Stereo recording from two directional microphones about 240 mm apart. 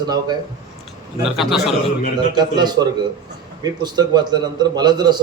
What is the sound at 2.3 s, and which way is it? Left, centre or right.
A man's voice, centre.